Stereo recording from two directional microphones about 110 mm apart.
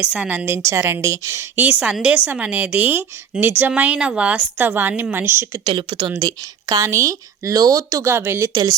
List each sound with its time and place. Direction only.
0.0 s a woman's voice: 5° right (ahead or behind)
1.8 s a woman's voice: 10° right (ahead or behind)
5.6 s a woman's voice: 45° right (ahead or behind)
6.1 s speech: 35° right (ahead or behind)